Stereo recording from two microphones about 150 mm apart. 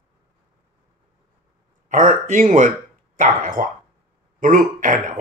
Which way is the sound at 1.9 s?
60° right (ahead or behind).